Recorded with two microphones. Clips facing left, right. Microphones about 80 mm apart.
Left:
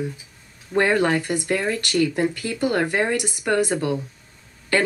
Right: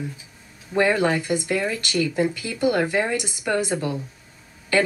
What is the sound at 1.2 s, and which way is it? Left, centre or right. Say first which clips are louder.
Speech: even; left.